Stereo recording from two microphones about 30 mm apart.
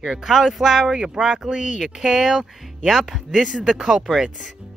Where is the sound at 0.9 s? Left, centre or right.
Right.